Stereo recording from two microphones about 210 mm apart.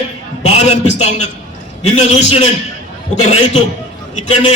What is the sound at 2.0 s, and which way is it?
Speech, 30° left (ahead or behind).